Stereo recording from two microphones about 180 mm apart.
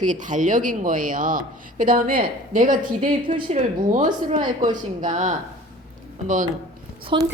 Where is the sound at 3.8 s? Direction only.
45° right (ahead or behind).